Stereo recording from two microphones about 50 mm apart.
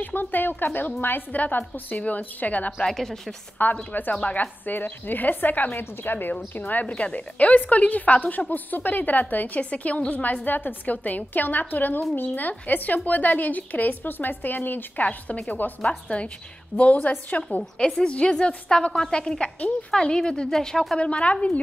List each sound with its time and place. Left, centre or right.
0.0 s a woman's voice: left
1.9 s a woman's voice: left
2.8 s a woman's voice: centre
3.6 s a woman's voice: left
17.6 s a woman's voice: centre
21.0 s a woman's voice: left